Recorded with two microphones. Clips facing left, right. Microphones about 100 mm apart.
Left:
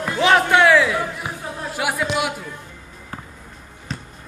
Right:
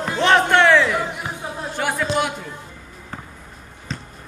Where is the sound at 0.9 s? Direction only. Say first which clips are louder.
Even; 20° right (ahead or behind).